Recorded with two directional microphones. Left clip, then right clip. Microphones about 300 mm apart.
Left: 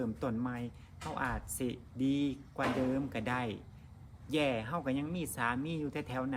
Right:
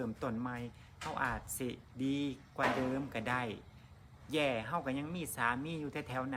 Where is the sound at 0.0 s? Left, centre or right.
Centre.